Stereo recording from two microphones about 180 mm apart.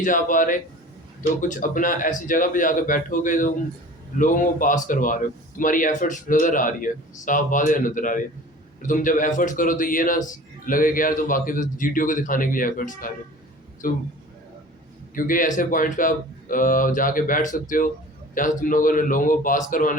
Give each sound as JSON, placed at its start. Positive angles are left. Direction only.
{"t": 0.0, "sound": "a man's voice", "side_deg": 50}
{"t": 15.1, "sound": "a man's voice", "side_deg": 50}